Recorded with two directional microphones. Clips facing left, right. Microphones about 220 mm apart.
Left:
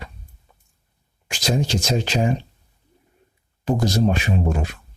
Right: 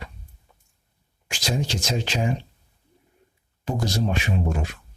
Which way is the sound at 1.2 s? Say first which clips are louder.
Left 4 dB; 40° left (ahead or behind).